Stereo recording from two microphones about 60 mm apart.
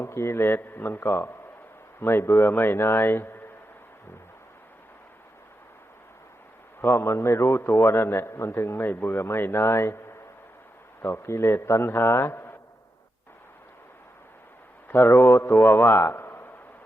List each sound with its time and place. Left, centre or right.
0.0 s speech: left
6.8 s a man's voice: left
14.8 s a man's voice: left